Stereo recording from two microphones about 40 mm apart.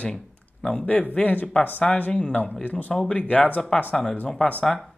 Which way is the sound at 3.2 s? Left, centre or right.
Left.